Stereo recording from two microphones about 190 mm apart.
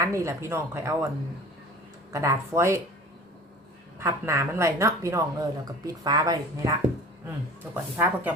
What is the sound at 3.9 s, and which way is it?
A woman's voice, 15° right (ahead or behind).